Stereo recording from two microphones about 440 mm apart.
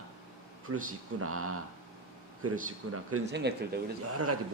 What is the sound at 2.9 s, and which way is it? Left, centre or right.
Speech, right.